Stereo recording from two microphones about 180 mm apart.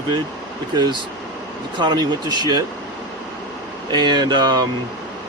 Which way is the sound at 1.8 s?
25° right (ahead or behind).